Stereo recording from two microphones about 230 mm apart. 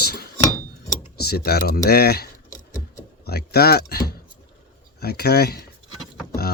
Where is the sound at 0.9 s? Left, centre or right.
Left.